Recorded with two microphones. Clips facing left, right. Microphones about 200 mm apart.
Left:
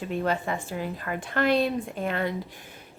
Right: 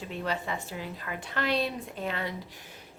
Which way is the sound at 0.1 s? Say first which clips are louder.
Left 6 dB; 50° left (ahead or behind).